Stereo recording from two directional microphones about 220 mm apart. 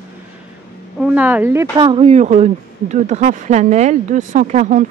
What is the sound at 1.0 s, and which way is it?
Speech, 5° right (ahead or behind).